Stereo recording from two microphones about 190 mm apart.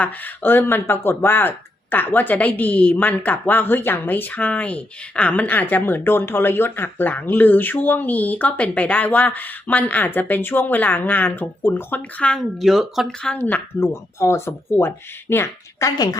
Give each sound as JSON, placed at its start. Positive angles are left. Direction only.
{"t": 0.0, "sound": "speech", "side_deg": 10}